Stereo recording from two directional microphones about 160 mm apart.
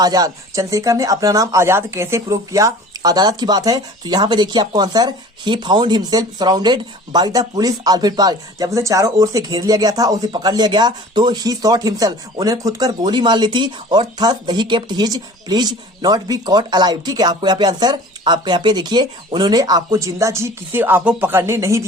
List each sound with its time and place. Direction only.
0.0 s speech: 25° right (ahead or behind)